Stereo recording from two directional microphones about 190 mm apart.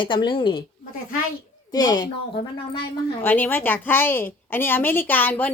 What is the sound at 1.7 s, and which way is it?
A woman's voice, 20° left (ahead or behind).